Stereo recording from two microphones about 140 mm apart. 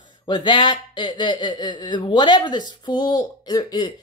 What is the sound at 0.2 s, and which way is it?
A woman's voice, 35° left (ahead or behind).